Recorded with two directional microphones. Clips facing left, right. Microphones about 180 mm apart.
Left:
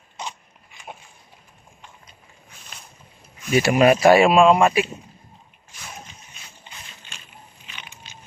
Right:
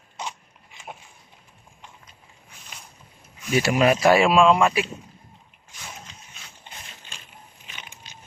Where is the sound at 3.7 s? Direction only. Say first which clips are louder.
Left 4 dB; 50° left (ahead or behind).